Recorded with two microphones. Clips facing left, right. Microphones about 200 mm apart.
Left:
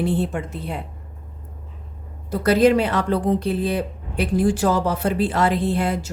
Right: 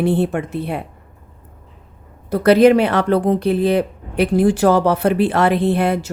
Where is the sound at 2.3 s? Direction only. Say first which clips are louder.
Right 5 dB; 65° right (ahead or behind).